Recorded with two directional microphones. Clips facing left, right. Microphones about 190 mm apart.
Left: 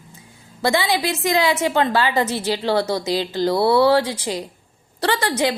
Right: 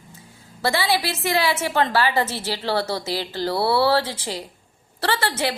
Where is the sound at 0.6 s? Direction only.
15° left (ahead or behind).